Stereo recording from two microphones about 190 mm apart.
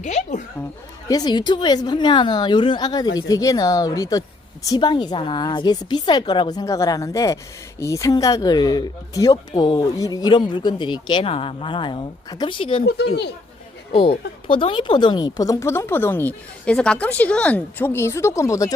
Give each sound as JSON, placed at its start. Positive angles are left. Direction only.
{"t": 0.0, "sound": "a woman's voice", "side_deg": 40}
{"t": 1.0, "sound": "speech", "side_deg": 20}
{"t": 13.9, "sound": "speech", "side_deg": 30}